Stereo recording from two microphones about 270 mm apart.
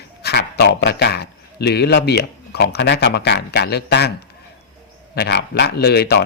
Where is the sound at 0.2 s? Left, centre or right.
Left.